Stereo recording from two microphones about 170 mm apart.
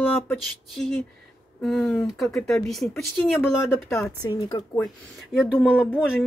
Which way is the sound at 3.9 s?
15° left (ahead or behind).